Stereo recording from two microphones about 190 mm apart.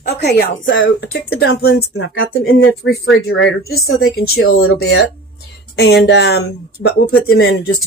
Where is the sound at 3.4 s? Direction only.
75° left (ahead or behind).